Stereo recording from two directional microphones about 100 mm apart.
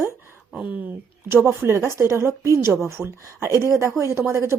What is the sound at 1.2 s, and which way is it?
A woman's voice, 25° right (ahead or behind).